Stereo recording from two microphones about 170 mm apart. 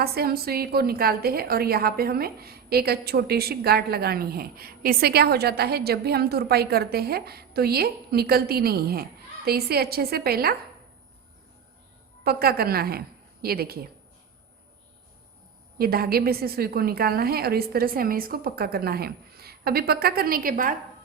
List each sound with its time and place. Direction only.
0.0 s a woman's voice: 65° right (ahead or behind)
12.2 s a woman's voice: 65° right (ahead or behind)
15.8 s a woman's voice: 65° right (ahead or behind)